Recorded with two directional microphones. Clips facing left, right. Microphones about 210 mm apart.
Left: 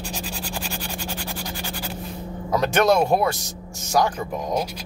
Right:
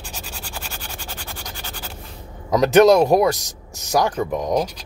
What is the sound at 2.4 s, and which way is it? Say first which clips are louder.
A man's voice: right 7 dB; 20° right (ahead or behind).